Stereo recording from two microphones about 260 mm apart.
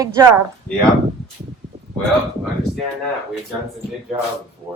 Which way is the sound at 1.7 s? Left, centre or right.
Right.